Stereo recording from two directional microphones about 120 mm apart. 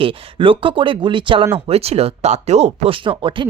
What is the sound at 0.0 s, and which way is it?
Speech, 50° right (ahead or behind).